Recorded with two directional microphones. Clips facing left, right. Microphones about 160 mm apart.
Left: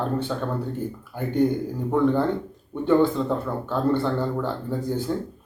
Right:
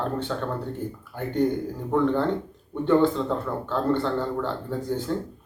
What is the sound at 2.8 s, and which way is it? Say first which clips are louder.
Speech: left 1 dB; 10° left (ahead or behind).